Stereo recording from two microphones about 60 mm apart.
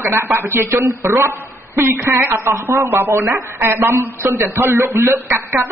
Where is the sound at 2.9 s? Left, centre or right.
Right.